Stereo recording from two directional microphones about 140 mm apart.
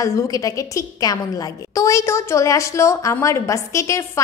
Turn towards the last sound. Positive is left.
turn(degrees=20)  # may be behind; listen again after turning